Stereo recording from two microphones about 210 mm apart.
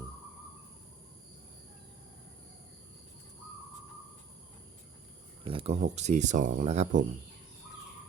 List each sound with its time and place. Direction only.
5.5 s speech: 25° right (ahead or behind)